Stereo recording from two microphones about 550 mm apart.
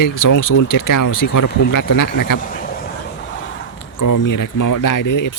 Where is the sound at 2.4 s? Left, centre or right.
Centre.